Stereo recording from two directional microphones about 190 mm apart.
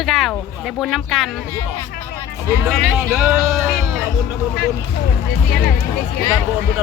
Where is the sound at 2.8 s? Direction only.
Centre (ahead or behind).